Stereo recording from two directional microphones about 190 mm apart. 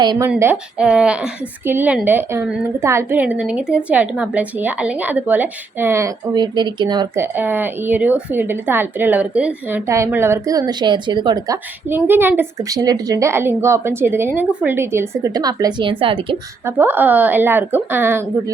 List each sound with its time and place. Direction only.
0.0 s speech: 20° right (ahead or behind)
0.3 s a woman's voice: 10° right (ahead or behind)
7.3 s a woman's voice: 10° right (ahead or behind); by 16.4 s 25° right (ahead or behind)
16.6 s a woman's voice: 10° right (ahead or behind)